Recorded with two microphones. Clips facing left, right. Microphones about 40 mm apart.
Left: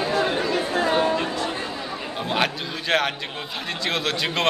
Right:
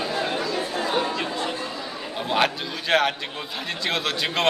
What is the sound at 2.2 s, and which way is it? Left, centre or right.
A man's voice, centre.